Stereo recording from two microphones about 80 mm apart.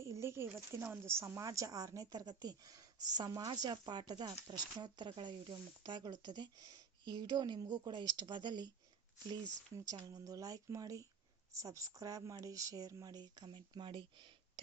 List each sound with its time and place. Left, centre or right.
0.0 s speech: right
9.7 s speech: right